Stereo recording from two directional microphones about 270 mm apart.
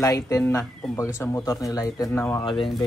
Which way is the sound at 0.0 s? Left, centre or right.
Centre.